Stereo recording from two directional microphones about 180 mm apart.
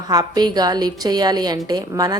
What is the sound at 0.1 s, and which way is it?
A woman's voice, 20° right (ahead or behind).